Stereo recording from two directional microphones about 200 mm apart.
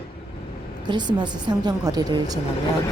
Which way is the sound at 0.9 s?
20° right (ahead or behind).